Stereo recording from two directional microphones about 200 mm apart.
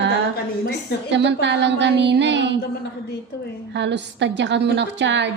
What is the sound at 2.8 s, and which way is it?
Speech, 55° left (ahead or behind).